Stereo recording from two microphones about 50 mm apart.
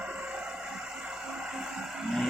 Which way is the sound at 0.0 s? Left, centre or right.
Centre.